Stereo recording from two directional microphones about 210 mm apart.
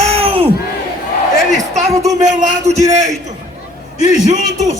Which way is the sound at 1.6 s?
35° right (ahead or behind).